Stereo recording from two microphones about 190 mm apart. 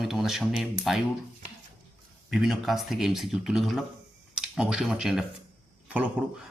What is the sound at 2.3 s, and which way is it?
Speech, centre (ahead or behind).